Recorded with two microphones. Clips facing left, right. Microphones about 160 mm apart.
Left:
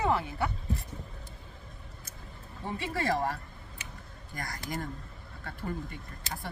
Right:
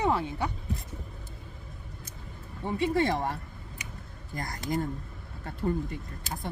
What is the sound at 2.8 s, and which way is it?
Speech, 20° right (ahead or behind).